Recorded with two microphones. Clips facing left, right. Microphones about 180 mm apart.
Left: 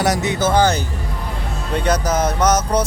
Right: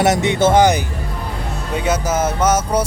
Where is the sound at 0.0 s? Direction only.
25° right (ahead or behind).